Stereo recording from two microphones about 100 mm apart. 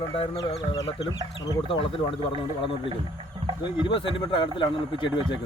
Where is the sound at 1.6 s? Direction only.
65° left (ahead or behind).